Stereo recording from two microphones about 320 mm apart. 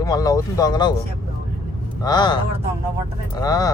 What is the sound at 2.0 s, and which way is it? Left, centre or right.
Speech, centre.